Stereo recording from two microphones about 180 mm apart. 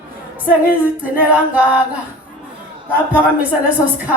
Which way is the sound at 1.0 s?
10° right (ahead or behind).